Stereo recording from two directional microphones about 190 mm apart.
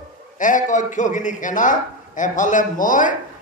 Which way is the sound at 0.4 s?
45° left (ahead or behind).